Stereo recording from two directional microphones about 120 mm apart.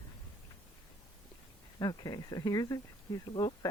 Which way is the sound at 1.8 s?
35° left (ahead or behind).